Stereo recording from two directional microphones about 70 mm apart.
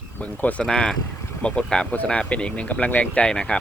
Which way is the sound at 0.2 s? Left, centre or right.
Left.